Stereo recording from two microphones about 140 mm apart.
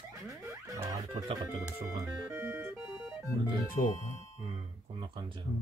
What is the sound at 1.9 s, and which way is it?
Music, 25° right (ahead or behind).